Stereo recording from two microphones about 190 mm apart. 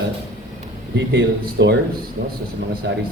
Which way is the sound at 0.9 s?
65° right (ahead or behind).